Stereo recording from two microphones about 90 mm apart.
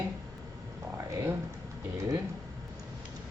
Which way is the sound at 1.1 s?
30° right (ahead or behind).